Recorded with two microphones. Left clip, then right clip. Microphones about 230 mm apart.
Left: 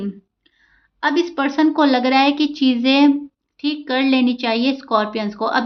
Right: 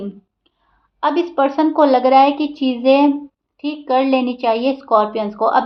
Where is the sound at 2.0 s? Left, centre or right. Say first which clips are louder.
Right 4 dB; left.